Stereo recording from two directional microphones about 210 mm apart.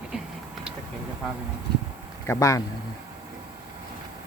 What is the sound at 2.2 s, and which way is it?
Speech, 15° left (ahead or behind).